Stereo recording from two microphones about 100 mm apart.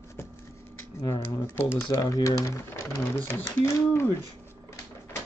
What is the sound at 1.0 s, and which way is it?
Speech, 35° left (ahead or behind).